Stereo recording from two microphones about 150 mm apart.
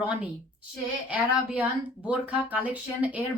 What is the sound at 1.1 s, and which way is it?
Speech, 10° right (ahead or behind).